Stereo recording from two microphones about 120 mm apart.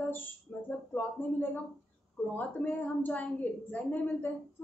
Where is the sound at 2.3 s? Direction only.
15° left (ahead or behind).